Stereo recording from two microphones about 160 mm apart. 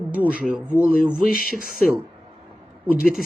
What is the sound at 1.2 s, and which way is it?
Speech, 65° left (ahead or behind).